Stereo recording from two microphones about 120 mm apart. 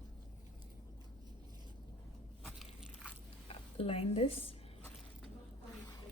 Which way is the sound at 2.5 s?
5° right (ahead or behind).